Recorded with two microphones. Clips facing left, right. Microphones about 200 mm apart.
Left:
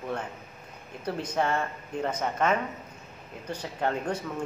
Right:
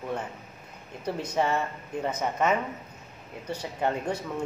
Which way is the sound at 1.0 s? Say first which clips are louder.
Right 1 dB; 10° right (ahead or behind).